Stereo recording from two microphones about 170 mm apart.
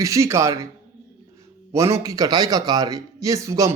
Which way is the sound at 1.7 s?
15° right (ahead or behind).